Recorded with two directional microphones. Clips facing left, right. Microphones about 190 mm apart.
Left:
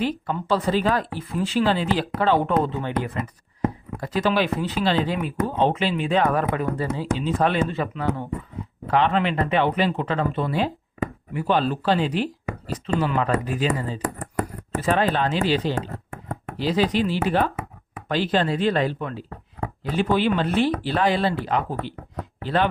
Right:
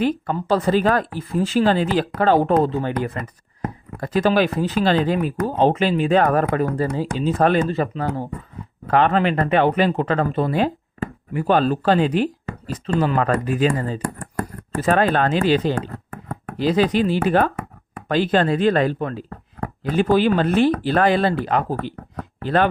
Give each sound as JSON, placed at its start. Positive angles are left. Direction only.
{"t": 0.0, "sound": "speech", "side_deg": -50}
{"t": 8.9, "sound": "speech", "side_deg": -50}
{"t": 14.0, "sound": "a sound", "side_deg": 20}
{"t": 14.8, "sound": "speech", "side_deg": -45}
{"t": 15.7, "sound": "a sound", "side_deg": 20}
{"t": 16.6, "sound": "speech", "side_deg": -50}
{"t": 18.9, "sound": "speech", "side_deg": -40}